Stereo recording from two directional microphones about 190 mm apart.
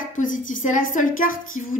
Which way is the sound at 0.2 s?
45° left (ahead or behind).